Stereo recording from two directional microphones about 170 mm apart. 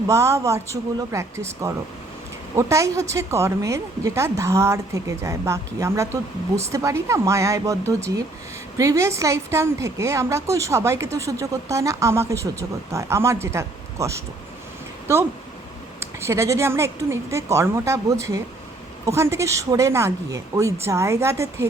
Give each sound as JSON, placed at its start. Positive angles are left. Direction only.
{"t": 0.1, "sound": "a woman's voice", "side_deg": -15}
{"t": 16.0, "sound": "a woman's voice", "side_deg": -15}